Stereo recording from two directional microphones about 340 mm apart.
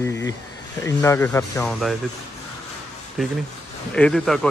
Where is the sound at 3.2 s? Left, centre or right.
Centre.